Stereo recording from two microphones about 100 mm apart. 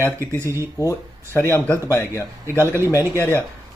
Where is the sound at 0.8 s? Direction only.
25° left (ahead or behind).